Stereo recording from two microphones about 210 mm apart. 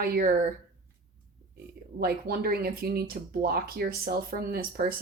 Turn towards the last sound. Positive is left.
turn(degrees=-45)  # may be behind; listen again after turning